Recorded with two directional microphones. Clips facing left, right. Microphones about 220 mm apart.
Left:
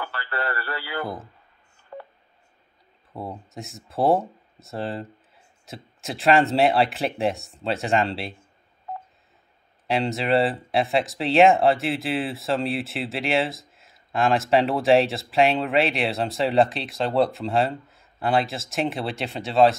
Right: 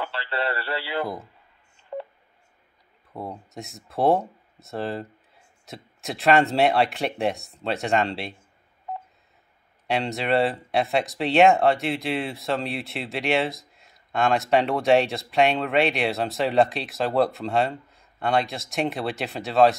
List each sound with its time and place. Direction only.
0.0 s speech: 25° right (ahead or behind)
1.0 s speech: centre (ahead or behind)
3.1 s speech: centre (ahead or behind)
9.8 s speech: centre (ahead or behind)